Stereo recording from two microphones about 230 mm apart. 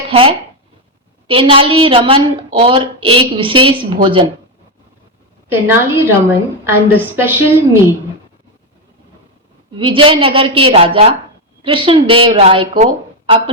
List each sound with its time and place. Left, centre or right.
0.1 s a woman's voice: right
5.5 s a woman's voice: centre
9.7 s a woman's voice: right